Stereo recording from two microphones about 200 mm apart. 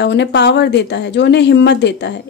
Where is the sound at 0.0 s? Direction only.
60° left (ahead or behind).